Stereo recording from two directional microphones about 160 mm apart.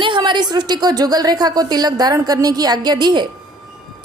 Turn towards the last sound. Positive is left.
turn(degrees=-25)  # may be behind; listen again after turning